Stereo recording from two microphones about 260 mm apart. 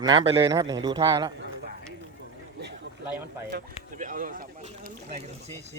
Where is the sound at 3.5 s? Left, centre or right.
Right.